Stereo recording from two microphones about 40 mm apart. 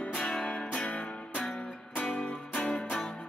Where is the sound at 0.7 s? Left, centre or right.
Left.